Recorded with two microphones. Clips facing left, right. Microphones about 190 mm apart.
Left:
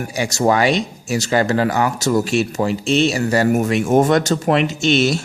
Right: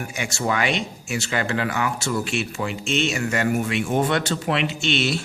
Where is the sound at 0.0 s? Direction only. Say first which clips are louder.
Left 8 dB; 35° left (ahead or behind).